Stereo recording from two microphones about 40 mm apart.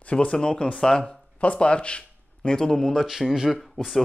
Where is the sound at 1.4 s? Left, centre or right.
Left.